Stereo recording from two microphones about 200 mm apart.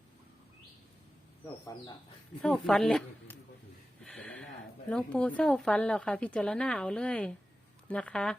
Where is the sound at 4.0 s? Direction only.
5° left (ahead or behind).